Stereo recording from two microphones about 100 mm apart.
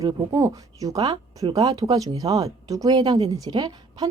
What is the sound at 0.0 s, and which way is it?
Speech, 35° right (ahead or behind).